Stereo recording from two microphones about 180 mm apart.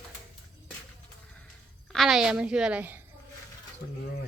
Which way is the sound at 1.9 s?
Centre (ahead or behind).